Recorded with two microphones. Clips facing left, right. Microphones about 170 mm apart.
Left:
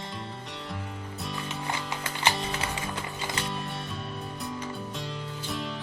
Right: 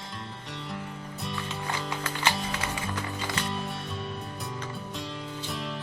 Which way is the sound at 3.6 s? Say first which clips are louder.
Right 1 dB; centre (ahead or behind).